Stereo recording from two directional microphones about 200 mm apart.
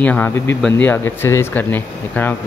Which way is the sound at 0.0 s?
10° left (ahead or behind).